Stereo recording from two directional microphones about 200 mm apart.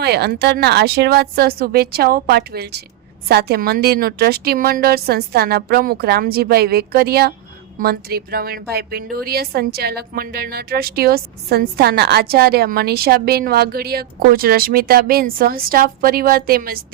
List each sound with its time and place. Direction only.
0.0 s a woman's voice: 55° right (ahead or behind)